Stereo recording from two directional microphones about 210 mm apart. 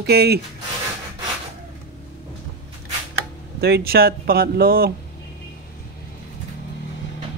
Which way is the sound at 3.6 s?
50° right (ahead or behind).